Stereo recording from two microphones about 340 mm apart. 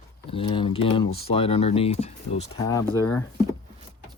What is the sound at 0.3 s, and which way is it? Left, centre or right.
Speech, centre.